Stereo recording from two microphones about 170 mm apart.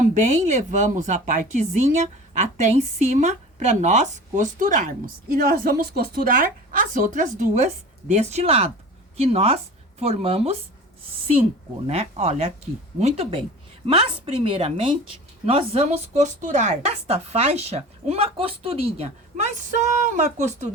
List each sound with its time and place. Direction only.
0.2 s speech: 45° right (ahead or behind)
5.3 s a woman's voice: 60° right (ahead or behind); by 10.6 s 35° right (ahead or behind)
11.9 s a woman's voice: 40° right (ahead or behind)